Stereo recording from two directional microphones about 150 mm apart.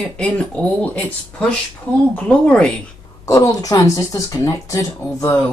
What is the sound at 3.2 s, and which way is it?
Speech, 20° left (ahead or behind).